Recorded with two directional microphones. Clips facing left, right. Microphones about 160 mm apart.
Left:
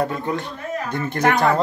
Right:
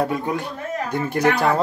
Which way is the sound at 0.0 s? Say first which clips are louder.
Right 1 dB; 10° right (ahead or behind).